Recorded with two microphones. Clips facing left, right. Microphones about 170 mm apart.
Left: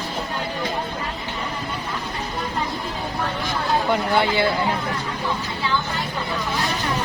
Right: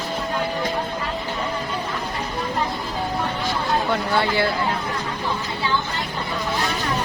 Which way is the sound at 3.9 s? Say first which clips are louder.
Left 1 dB; 20° left (ahead or behind).